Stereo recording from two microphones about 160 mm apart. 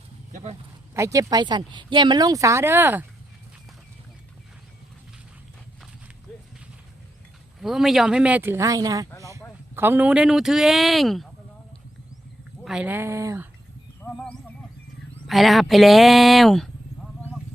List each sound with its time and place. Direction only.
0.9 s speech: 20° right (ahead or behind)
7.6 s speech: centre (ahead or behind)
12.6 s speech: 5° right (ahead or behind)
14.0 s a sound: 5° left (ahead or behind)
15.3 s speech: centre (ahead or behind)